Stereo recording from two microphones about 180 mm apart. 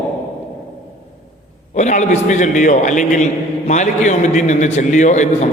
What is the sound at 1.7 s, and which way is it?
A man's voice, 40° left (ahead or behind).